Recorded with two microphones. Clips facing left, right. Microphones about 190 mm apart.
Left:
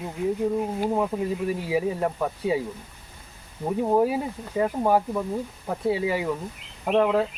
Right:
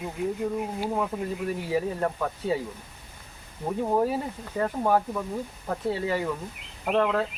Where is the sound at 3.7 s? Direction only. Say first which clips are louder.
Left 3 dB; 10° left (ahead or behind).